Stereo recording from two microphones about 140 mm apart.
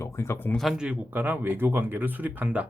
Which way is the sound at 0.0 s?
20° left (ahead or behind).